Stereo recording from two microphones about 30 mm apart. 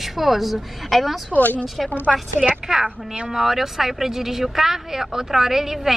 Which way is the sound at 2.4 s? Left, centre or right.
Centre.